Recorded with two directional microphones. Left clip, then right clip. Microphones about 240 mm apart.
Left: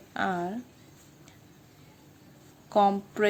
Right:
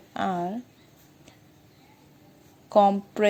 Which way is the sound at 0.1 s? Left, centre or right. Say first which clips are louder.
Right 2 dB; centre.